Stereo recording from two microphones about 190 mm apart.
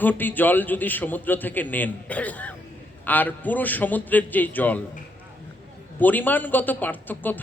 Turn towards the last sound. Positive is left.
turn(degrees=10)  # may be behind; listen again after turning